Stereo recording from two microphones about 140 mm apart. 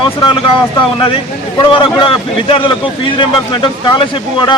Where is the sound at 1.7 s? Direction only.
40° left (ahead or behind).